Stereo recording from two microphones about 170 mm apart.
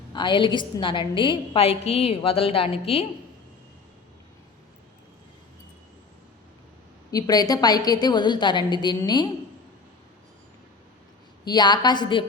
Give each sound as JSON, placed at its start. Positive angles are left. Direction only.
{"t": 0.1, "sound": "a woman's voice", "side_deg": 25}
{"t": 7.1, "sound": "a woman's voice", "side_deg": 20}
{"t": 11.4, "sound": "a woman's voice", "side_deg": 25}